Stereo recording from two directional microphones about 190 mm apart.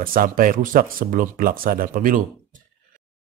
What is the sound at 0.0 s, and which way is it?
Speech, 50° right (ahead or behind).